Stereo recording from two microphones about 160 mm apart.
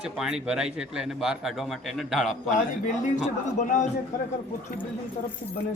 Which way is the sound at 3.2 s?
50° left (ahead or behind).